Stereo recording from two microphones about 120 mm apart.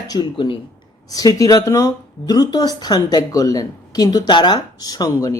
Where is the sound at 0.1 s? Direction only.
40° left (ahead or behind).